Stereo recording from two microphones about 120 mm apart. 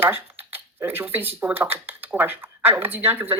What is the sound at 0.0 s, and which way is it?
Speech, 20° right (ahead or behind).